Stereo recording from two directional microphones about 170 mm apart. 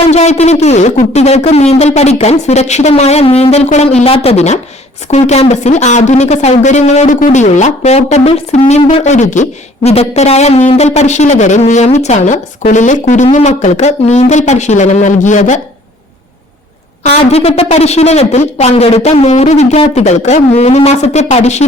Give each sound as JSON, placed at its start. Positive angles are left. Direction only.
{"t": 0.1, "sound": "speech", "side_deg": 40}
{"t": 17.0, "sound": "speech", "side_deg": 35}